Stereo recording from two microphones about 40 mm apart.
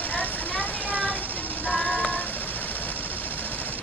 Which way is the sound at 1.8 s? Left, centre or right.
Right.